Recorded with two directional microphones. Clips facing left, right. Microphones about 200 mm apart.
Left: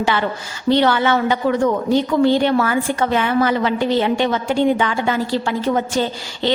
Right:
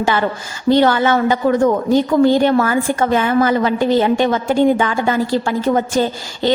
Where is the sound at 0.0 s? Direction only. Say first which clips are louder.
Right 2 dB; 45° right (ahead or behind).